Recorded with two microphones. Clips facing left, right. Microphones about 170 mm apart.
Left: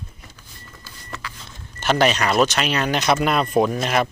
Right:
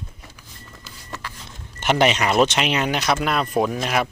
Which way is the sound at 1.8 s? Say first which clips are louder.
Even; 20° right (ahead or behind).